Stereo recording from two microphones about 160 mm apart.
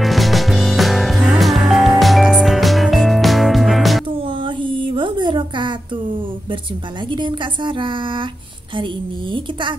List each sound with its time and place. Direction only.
0.0 s music: centre (ahead or behind)
4.2 s a sound: 30° right (ahead or behind)
7.1 s a woman's voice: 30° right (ahead or behind)